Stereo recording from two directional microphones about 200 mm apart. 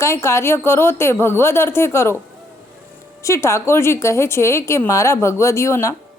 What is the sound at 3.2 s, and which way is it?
A woman's voice, 15° left (ahead or behind).